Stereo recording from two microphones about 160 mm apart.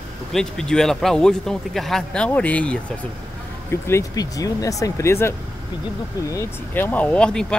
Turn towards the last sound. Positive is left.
turn(degrees=5)  # may be behind; listen again after turning